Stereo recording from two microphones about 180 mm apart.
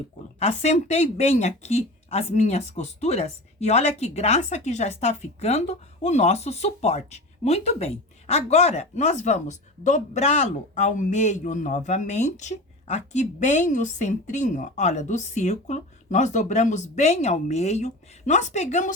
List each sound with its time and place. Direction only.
0.3 s speech: 35° left (ahead or behind)